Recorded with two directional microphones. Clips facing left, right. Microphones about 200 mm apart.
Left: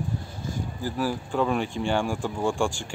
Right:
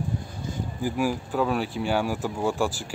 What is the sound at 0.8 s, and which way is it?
Speech, 10° right (ahead or behind).